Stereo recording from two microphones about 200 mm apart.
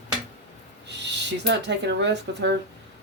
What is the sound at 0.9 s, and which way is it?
Speech, 60° right (ahead or behind).